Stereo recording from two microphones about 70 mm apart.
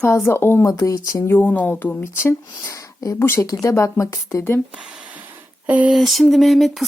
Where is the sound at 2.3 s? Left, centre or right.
Left.